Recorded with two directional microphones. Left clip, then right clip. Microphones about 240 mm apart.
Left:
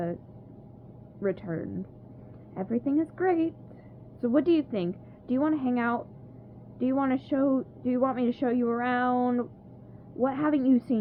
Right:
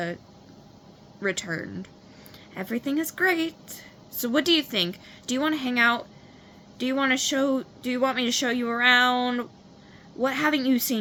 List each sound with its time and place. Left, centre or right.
1.2 s speech: centre